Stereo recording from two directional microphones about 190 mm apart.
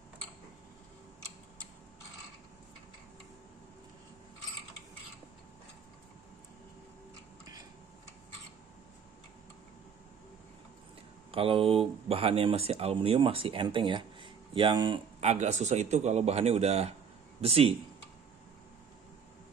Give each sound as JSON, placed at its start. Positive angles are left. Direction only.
{"t": 11.3, "sound": "speech", "side_deg": -30}
{"t": 15.1, "sound": "speech", "side_deg": -35}